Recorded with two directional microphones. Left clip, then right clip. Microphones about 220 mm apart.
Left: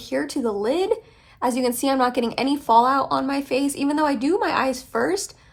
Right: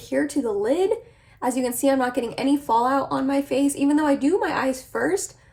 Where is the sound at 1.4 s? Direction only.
15° left (ahead or behind).